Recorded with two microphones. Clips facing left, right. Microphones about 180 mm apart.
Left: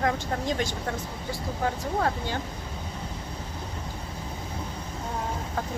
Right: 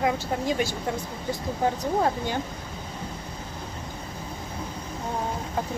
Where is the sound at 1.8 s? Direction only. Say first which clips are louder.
Right 3 dB; 20° right (ahead or behind).